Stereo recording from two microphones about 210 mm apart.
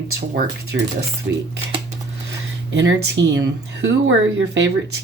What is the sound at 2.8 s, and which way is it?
Speech, 55° right (ahead or behind).